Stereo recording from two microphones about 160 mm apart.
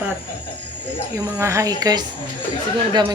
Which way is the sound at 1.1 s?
20° right (ahead or behind).